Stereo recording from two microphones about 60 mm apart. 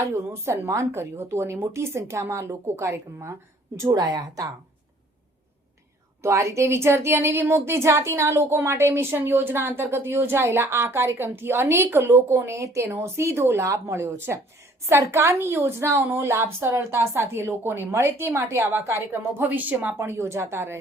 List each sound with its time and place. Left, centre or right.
0.1 s a woman's voice: right
3.8 s speech: right
6.2 s a woman's voice: right
19.4 s speech: right
20.0 s a woman's voice: right